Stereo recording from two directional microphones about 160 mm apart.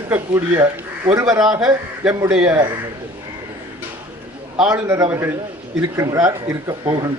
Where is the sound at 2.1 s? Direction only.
20° right (ahead or behind).